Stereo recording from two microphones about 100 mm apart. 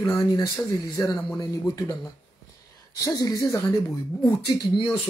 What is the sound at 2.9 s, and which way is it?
Speech, 35° left (ahead or behind).